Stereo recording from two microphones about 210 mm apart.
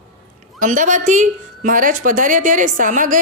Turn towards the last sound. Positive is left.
turn(degrees=-40)  # may be behind; listen again after turning